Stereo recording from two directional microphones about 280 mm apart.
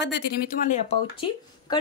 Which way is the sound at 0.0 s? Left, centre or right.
Left.